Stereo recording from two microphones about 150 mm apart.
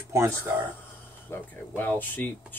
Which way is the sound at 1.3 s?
15° left (ahead or behind).